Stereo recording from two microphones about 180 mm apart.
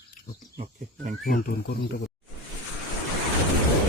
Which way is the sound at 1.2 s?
50° left (ahead or behind).